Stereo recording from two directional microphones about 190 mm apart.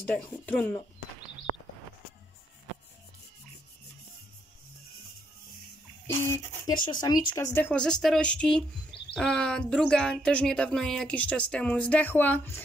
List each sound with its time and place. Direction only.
0.1 s speech: 10° left (ahead or behind)
6.1 s speech: 15° left (ahead or behind)
7.5 s speech: 10° left (ahead or behind)